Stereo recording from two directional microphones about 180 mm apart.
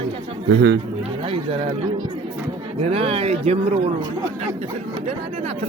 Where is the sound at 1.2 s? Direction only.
30° right (ahead or behind).